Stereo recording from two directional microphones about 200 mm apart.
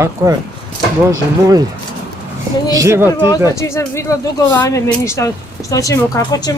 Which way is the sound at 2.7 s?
15° right (ahead or behind).